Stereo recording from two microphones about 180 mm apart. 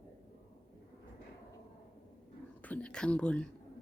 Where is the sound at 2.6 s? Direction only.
10° left (ahead or behind).